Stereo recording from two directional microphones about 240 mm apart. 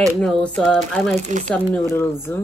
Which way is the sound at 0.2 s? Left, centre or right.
Centre.